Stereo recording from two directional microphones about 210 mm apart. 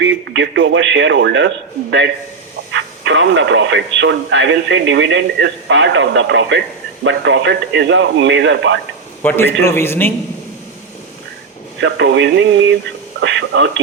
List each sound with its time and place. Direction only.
0.0 s speech: 60° right (ahead or behind)
9.2 s a man's voice: 10° left (ahead or behind)
11.8 s speech: 60° right (ahead or behind)